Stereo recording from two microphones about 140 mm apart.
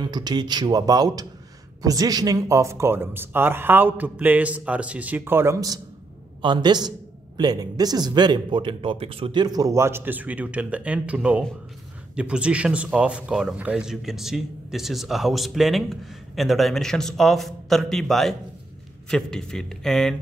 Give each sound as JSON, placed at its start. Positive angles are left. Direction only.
{"t": 0.0, "sound": "speech", "side_deg": -30}
{"t": 6.4, "sound": "a man's voice", "side_deg": -35}